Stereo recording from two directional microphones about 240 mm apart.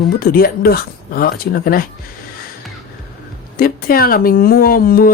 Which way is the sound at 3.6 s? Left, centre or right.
Left.